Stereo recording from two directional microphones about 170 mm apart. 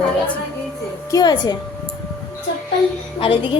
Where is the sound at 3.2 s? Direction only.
30° left (ahead or behind).